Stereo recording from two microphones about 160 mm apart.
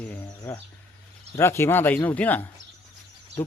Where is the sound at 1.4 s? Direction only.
15° left (ahead or behind).